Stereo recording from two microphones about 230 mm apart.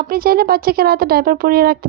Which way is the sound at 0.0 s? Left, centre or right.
Right.